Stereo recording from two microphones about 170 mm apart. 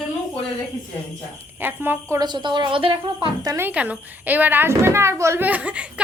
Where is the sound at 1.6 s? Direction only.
10° right (ahead or behind).